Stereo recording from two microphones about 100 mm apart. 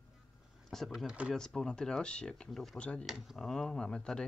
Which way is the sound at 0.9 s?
5° right (ahead or behind).